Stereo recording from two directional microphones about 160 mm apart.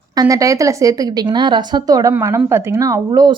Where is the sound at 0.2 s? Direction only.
20° right (ahead or behind).